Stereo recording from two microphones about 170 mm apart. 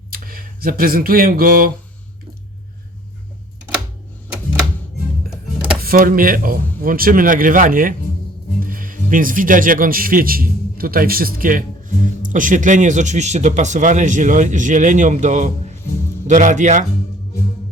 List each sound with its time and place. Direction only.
0.1 s speech: 60° right (ahead or behind)
5.8 s speech: 60° right (ahead or behind)